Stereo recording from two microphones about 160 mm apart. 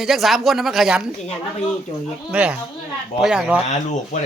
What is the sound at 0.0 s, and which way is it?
Speech, centre (ahead or behind).